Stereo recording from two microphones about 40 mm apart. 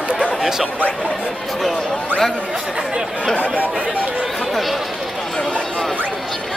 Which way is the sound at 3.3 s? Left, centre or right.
Left.